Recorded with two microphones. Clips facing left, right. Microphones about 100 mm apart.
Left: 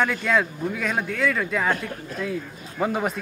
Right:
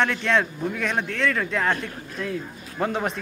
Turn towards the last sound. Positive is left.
turn(degrees=5)  # may be behind; listen again after turning